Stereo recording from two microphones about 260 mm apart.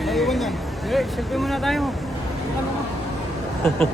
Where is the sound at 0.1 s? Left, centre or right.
Centre.